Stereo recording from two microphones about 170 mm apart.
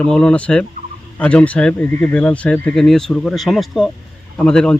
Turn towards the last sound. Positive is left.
turn(degrees=5)  # may be behind; listen again after turning